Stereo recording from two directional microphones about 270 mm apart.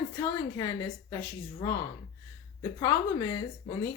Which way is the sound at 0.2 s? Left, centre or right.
Centre.